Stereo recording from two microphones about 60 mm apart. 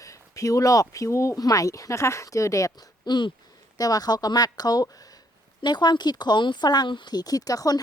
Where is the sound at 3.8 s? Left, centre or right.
Left.